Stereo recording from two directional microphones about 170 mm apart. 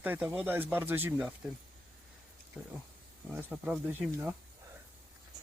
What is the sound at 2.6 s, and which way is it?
Speech, 5° right (ahead or behind).